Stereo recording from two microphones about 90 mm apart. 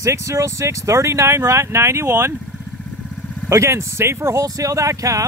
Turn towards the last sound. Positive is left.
turn(degrees=-35)  # may be behind; listen again after turning